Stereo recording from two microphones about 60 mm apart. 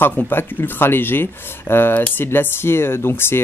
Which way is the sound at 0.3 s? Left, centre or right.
Left.